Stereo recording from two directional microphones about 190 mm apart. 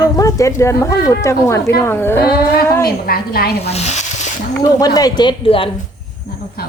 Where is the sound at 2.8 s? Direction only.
55° left (ahead or behind).